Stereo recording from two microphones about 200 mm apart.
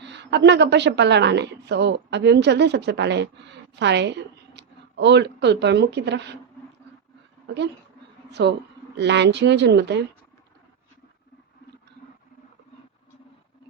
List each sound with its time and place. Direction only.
0.0 s a woman's voice: 60° right (ahead or behind)
7.4 s a woman's voice: 60° right (ahead or behind)